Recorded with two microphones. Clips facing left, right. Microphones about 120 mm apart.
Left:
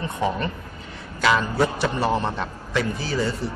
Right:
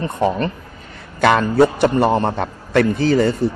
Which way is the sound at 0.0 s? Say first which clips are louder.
Right 6 dB; 50° right (ahead or behind).